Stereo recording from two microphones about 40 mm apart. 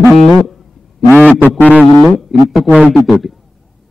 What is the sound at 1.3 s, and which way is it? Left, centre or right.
Speech, left.